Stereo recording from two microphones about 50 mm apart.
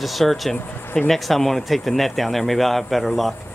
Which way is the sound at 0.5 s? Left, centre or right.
Left.